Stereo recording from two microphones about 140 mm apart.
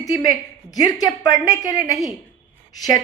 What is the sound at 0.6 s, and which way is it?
A woman's voice, 25° left (ahead or behind).